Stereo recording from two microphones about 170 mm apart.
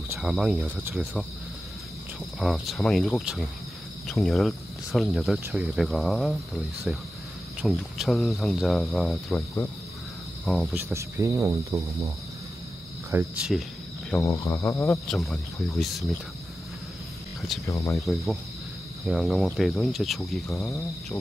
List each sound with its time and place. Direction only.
0.2 s speech: centre (ahead or behind)
2.3 s speech: centre (ahead or behind)
10.4 s cricket: 5° left (ahead or behind)
10.7 s speech: 15° right (ahead or behind)
13.1 s speech: 15° right (ahead or behind)
13.5 s speech: centre (ahead or behind)
14.2 s speech: 20° left (ahead or behind)
15.0 s speech: centre (ahead or behind)
17.6 s speech: 20° left (ahead or behind)
18.0 s speech: centre (ahead or behind)
20.4 s speech: 15° left (ahead or behind)